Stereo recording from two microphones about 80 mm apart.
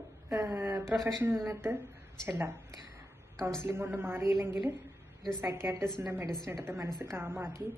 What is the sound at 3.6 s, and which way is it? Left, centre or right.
A woman's voice, right.